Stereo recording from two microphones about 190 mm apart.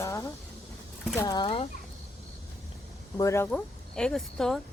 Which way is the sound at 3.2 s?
15° left (ahead or behind).